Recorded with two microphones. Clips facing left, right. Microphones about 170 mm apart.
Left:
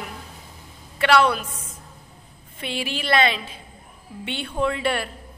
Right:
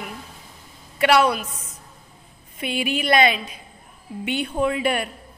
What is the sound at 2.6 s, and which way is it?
Speech, 30° left (ahead or behind).